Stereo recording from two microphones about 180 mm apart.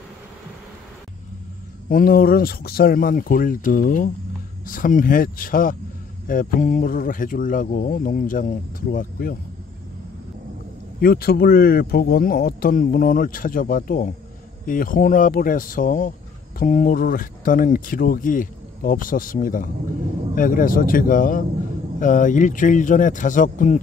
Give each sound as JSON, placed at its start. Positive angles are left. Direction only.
{"t": 1.9, "sound": "speech", "side_deg": 55}
{"t": 11.0, "sound": "speech", "side_deg": 55}